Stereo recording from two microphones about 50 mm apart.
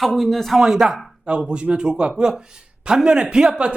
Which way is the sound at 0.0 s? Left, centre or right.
Centre.